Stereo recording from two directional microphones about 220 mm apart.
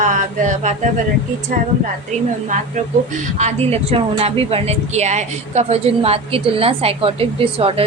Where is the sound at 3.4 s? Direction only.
30° right (ahead or behind).